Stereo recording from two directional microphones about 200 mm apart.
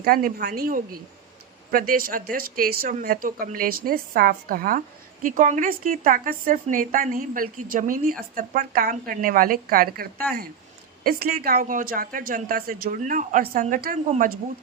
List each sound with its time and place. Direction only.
0.0 s a woman's voice: 45° right (ahead or behind)